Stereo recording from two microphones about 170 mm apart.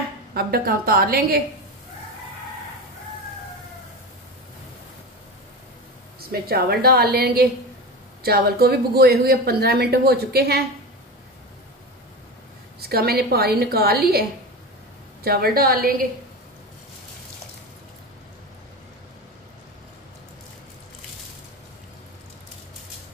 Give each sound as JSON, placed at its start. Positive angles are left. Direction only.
{"t": 0.3, "sound": "a woman's voice", "side_deg": -65}
{"t": 6.3, "sound": "a woman's voice", "side_deg": -65}
{"t": 12.8, "sound": "speech", "side_deg": -65}
{"t": 15.2, "sound": "a woman's voice", "side_deg": -65}